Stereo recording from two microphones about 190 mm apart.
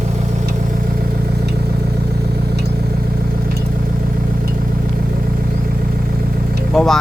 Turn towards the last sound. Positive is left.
turn(degrees=0)  # may be behind; listen again after turning